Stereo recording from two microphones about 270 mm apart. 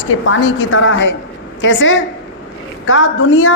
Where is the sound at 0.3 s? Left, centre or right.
Left.